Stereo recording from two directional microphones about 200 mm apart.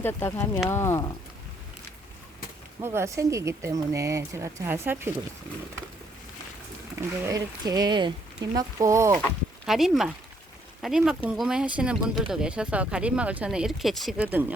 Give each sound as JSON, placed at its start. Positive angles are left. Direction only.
{"t": 0.0, "sound": "speech", "side_deg": 10}
{"t": 2.8, "sound": "speech", "side_deg": -15}
{"t": 7.0, "sound": "speech", "side_deg": -15}
{"t": 9.6, "sound": "speech", "side_deg": 0}